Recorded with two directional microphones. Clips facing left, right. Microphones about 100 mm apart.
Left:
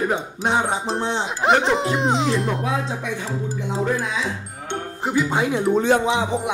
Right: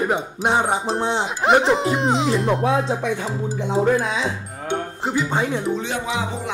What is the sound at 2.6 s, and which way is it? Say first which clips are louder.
Speech: right 5 dB; 35° right (ahead or behind).